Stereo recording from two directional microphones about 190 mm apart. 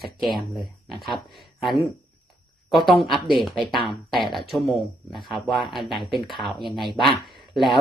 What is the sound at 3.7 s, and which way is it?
Speech, 25° left (ahead or behind).